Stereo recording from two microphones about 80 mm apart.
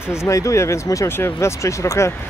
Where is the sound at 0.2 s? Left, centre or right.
Left.